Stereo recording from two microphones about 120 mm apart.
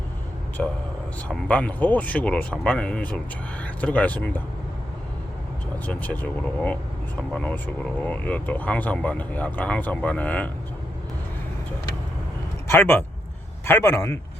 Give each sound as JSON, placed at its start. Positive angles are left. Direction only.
{"t": 0.6, "sound": "speech", "side_deg": 5}
{"t": 5.8, "sound": "speech", "side_deg": 10}
{"t": 12.6, "sound": "a man's voice", "side_deg": 15}